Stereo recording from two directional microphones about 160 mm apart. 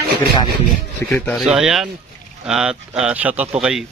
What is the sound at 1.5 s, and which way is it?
Speech, 5° right (ahead or behind).